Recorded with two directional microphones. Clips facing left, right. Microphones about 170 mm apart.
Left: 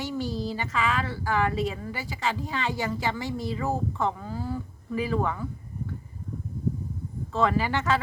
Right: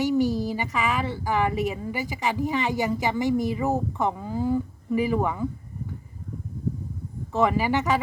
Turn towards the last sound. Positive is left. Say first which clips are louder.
# right 2 dB
turn(degrees=-15)  # may be behind; listen again after turning